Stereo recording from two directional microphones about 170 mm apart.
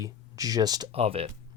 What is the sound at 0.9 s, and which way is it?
Speech, 35° right (ahead or behind).